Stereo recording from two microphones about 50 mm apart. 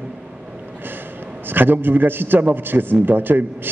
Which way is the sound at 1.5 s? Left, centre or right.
Right.